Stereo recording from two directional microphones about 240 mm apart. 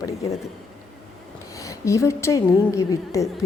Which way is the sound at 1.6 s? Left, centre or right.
Centre.